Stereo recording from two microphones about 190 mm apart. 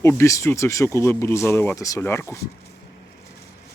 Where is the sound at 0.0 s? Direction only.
15° left (ahead or behind).